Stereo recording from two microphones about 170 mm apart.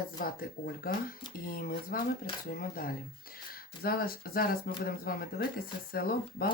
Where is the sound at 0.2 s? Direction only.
60° left (ahead or behind).